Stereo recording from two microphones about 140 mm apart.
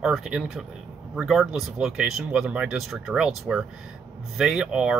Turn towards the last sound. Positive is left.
turn(degrees=-5)  # may be behind; listen again after turning